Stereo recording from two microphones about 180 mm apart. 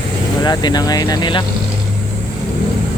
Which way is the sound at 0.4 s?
25° left (ahead or behind).